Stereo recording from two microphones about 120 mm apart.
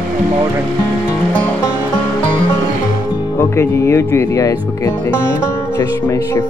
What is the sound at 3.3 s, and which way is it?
Speech, 25° left (ahead or behind).